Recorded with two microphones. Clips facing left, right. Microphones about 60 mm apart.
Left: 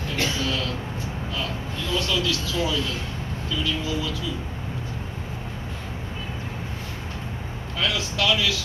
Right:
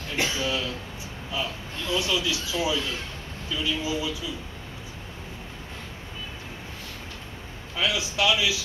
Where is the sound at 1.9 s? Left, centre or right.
Centre.